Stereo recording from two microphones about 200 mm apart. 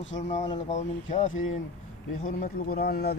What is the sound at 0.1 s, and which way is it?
Speech, 35° left (ahead or behind).